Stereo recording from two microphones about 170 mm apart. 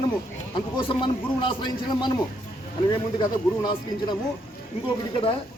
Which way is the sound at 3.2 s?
25° left (ahead or behind).